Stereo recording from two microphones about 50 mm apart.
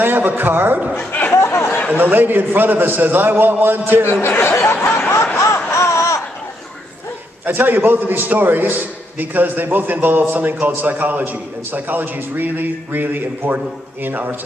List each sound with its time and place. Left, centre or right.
0.0 s a man's voice: right
0.9 s chatter: left
1.3 s chatter: left
2.0 s a man's voice: right
4.4 s laughter: left
7.4 s a man's voice: right